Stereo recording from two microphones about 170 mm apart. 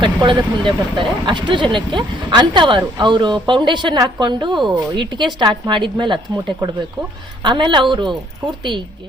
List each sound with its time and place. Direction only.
0.0 s speech: 25° right (ahead or behind)